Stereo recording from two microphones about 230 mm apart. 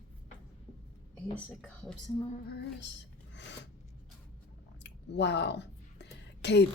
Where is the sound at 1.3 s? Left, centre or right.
Centre.